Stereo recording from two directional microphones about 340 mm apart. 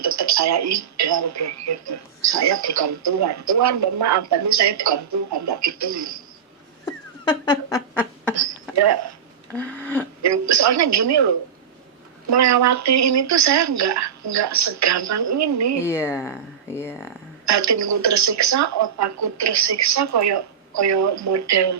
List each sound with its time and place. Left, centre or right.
0.0 s speech: right
6.8 s cat: centre
8.8 s speech: right
9.6 s a sound: centre
10.2 s speech: right
12.3 s speech: right
15.8 s speech: centre
17.4 s speech: right